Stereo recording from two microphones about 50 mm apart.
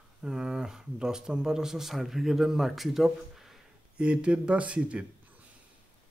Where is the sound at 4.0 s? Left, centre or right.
Right.